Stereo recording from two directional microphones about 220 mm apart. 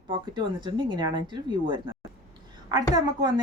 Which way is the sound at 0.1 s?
20° right (ahead or behind).